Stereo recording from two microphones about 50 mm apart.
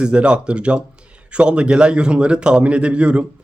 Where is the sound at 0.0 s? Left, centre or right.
Right.